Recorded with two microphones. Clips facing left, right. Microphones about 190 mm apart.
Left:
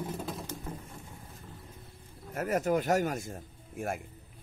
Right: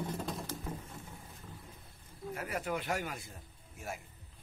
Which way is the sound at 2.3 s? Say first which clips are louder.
Left 9 dB; 45° left (ahead or behind).